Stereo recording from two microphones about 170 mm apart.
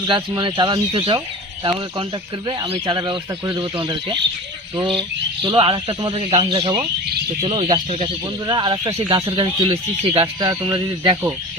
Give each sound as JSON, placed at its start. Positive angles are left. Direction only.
{"t": 0.1, "sound": "speech", "side_deg": -25}
{"t": 4.8, "sound": "speech", "side_deg": -30}